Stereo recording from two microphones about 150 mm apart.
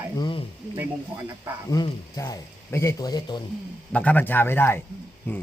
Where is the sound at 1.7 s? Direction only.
20° left (ahead or behind).